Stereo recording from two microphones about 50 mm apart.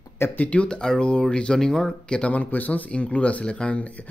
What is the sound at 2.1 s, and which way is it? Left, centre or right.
Speech, left.